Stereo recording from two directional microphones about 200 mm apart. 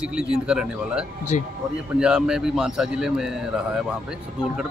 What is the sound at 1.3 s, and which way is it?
Speech, 35° left (ahead or behind).